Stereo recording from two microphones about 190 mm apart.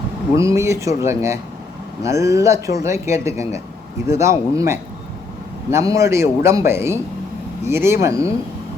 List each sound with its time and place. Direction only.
0.3 s speech: 15° right (ahead or behind)